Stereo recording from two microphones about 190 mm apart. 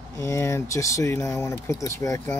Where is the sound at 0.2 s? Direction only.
15° left (ahead or behind).